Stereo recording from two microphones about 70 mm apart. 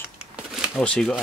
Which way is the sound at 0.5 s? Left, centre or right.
Centre.